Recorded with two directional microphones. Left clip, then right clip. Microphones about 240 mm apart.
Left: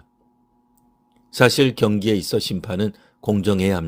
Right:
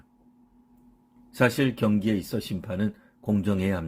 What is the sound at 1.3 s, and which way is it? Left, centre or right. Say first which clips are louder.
Speech: left 8 dB; left.